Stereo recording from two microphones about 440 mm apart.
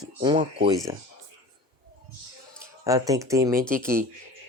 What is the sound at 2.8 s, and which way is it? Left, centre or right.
Speech, centre.